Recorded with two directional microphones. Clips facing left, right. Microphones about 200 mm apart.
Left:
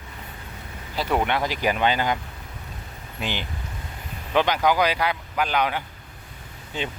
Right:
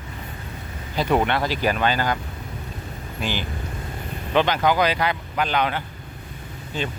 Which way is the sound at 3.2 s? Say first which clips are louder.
Right 2 dB; 20° left (ahead or behind).